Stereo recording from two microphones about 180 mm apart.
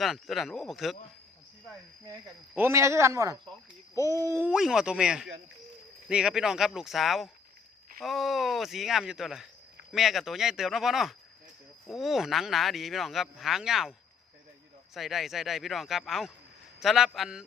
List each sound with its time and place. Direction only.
0.0 s speech: centre (ahead or behind)
2.6 s a man's voice: 15° right (ahead or behind)
4.3 s speech: 10° right (ahead or behind)
14.9 s speech: centre (ahead or behind)